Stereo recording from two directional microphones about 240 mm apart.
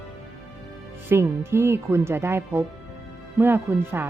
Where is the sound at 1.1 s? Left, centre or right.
Centre.